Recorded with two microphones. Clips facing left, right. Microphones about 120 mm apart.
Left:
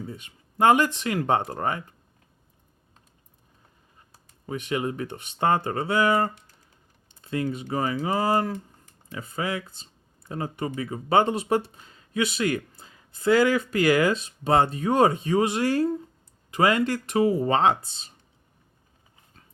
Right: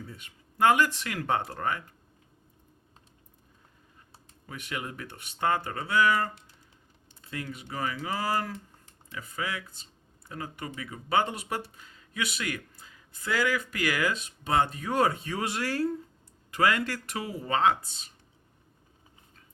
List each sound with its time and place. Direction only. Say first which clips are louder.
0.1 s speech: left 8 dB; 25° left (ahead or behind)
4.4 s speech: left 9 dB; 25° left (ahead or behind)